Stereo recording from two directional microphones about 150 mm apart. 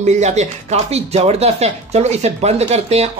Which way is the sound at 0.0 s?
50° right (ahead or behind).